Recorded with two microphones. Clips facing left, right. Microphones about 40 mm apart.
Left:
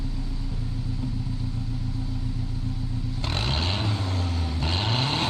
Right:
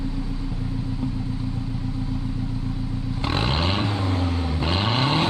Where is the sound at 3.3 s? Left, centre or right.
Centre.